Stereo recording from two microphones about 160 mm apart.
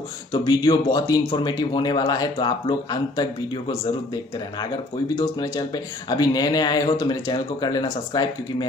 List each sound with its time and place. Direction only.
0.5 s speech: 25° left (ahead or behind)